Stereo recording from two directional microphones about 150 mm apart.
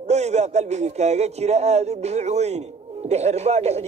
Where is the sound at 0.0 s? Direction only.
50° right (ahead or behind).